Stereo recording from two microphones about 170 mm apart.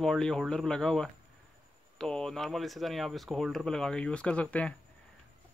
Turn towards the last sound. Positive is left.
turn(degrees=5)  # may be behind; listen again after turning